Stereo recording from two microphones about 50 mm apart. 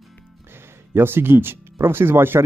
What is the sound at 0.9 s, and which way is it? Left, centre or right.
Speech, right.